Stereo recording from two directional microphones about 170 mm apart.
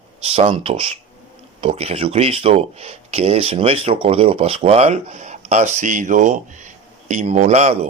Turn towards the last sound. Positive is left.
turn(degrees=-40)  # may be behind; listen again after turning